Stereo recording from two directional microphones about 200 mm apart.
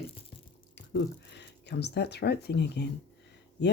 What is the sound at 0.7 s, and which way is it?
Speech, 60° left (ahead or behind).